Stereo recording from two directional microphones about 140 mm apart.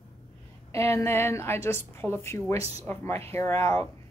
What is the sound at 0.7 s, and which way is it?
A woman's voice, 20° left (ahead or behind).